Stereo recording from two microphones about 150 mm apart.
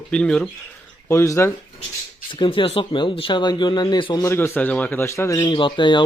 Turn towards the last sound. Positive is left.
turn(degrees=30)  # may be behind; listen again after turning